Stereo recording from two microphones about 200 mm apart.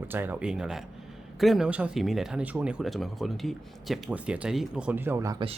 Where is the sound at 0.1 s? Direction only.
10° right (ahead or behind).